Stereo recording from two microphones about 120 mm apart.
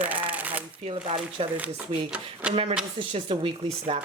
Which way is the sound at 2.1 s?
10° right (ahead or behind).